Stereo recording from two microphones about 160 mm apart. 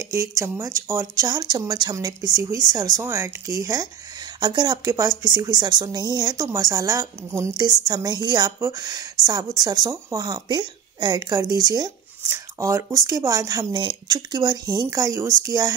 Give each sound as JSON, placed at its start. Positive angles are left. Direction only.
{"t": 0.1, "sound": "speech", "side_deg": -20}